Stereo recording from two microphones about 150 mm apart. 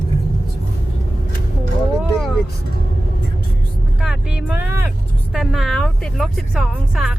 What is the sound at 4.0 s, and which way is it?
Vehicle, 5° right (ahead or behind).